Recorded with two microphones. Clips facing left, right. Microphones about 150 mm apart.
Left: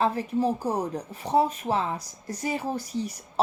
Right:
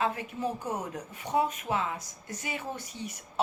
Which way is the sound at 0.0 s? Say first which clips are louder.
Left 6 dB; 35° left (ahead or behind).